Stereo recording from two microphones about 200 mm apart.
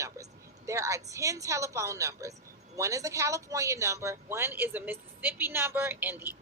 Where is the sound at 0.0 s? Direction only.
15° right (ahead or behind).